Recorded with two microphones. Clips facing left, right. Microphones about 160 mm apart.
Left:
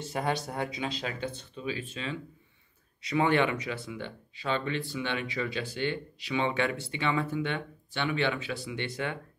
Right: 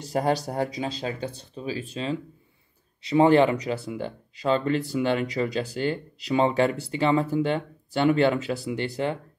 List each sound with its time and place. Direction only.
0.0 s speech: 35° right (ahead or behind)